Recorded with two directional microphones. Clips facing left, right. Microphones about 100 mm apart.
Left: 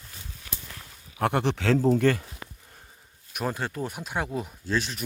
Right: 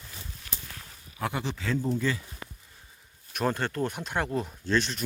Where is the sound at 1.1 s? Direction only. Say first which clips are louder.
Left 7 dB; 60° left (ahead or behind); by 2.1 s 90° left.